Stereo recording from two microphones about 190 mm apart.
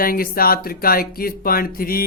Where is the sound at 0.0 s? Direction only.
50° left (ahead or behind).